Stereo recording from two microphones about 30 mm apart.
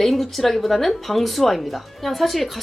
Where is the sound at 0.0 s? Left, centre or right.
Centre.